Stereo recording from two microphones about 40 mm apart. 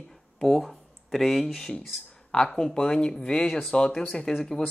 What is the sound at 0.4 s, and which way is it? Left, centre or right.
Speech, centre.